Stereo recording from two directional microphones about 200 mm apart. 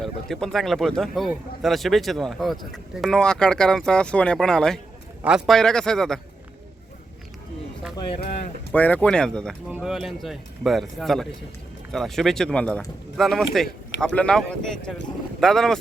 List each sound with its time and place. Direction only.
0.0 s speech: 5° left (ahead or behind)
7.9 s speech: 25° left (ahead or behind)
8.7 s speech: 10° left (ahead or behind)